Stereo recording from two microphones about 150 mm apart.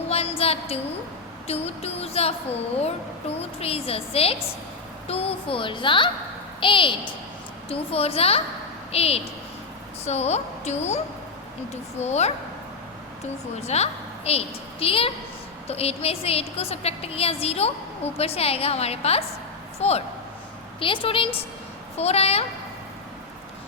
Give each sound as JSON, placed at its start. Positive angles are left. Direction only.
{"t": 0.1, "sound": "a sound", "side_deg": 40}
{"t": 1.5, "sound": "a woman's voice", "side_deg": 45}
{"t": 13.6, "sound": "a woman's voice", "side_deg": 45}